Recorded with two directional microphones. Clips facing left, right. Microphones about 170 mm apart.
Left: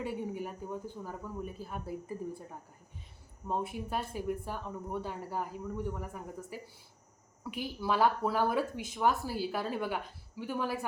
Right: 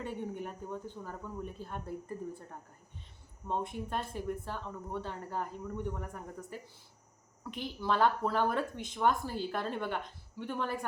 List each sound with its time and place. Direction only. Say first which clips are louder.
0.0 s speech: left 2 dB; 5° left (ahead or behind)